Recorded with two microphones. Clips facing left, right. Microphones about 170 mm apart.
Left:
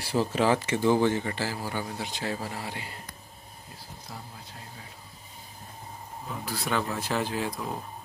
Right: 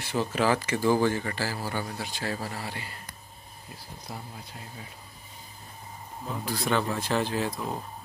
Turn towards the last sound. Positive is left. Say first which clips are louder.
# right 2 dB
turn(degrees=10)  # may be behind; listen again after turning